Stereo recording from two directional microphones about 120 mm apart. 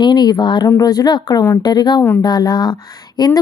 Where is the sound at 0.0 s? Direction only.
35° left (ahead or behind).